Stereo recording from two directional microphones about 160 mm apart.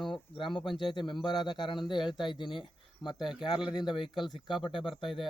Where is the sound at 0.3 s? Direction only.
30° left (ahead or behind).